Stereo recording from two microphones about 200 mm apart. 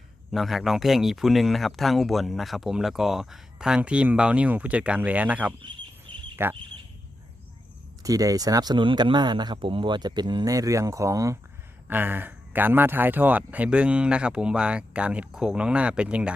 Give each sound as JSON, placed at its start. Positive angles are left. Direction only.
{"t": 0.3, "sound": "speech", "side_deg": 0}
{"t": 8.0, "sound": "speech", "side_deg": -15}